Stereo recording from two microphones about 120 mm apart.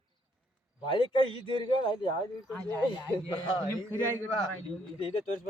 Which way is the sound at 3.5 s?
40° left (ahead or behind).